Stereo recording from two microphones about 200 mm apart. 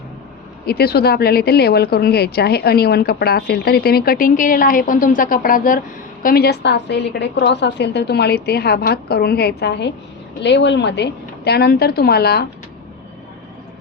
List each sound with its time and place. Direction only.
0.7 s a woman's voice: 50° left (ahead or behind)